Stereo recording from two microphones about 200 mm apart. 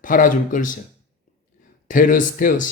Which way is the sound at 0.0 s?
40° left (ahead or behind).